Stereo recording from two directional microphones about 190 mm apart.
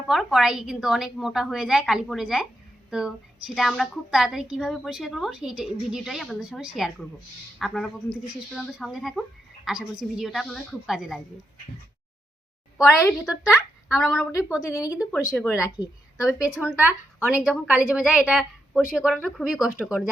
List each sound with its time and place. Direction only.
0.1 s a woman's voice: centre (ahead or behind)
13.2 s a woman's voice: 5° right (ahead or behind)
14.6 s a woman's voice: 15° left (ahead or behind)
16.1 s a woman's voice: 5° right (ahead or behind)